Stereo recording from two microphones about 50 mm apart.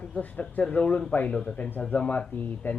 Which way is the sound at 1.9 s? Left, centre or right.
Left.